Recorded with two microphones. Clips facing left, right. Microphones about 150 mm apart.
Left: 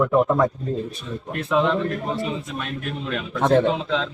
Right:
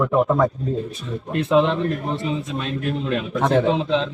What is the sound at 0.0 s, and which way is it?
Speech, centre (ahead or behind).